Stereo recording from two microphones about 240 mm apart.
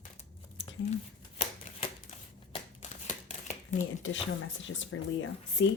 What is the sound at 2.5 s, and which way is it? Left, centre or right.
Shuffling cards, left.